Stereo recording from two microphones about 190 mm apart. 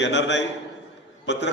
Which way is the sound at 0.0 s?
70° left (ahead or behind).